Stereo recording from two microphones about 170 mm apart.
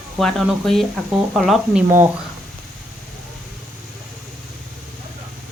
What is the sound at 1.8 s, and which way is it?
Speech, 15° right (ahead or behind).